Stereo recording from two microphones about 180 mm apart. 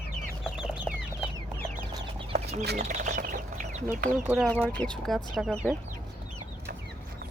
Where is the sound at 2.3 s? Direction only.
35° right (ahead or behind).